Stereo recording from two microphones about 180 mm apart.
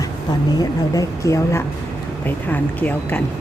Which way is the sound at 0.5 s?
20° left (ahead or behind).